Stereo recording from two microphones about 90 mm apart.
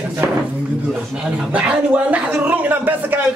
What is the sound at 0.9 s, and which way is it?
Speech, 10° right (ahead or behind).